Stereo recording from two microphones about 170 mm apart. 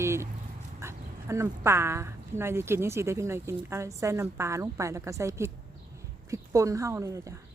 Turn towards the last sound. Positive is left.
turn(degrees=-20)  # may be behind; listen again after turning